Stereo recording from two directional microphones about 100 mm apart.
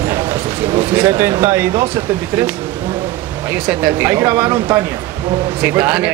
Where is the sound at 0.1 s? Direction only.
30° right (ahead or behind).